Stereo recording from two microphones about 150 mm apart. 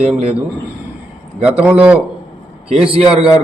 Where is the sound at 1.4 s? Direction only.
10° right (ahead or behind).